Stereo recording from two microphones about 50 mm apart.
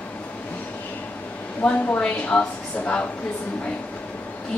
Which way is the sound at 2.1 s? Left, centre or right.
Left.